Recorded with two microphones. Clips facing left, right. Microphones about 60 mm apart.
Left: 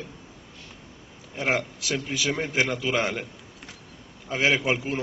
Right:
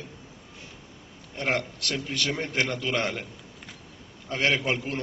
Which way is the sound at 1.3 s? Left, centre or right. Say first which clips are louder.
Left 2 dB; centre.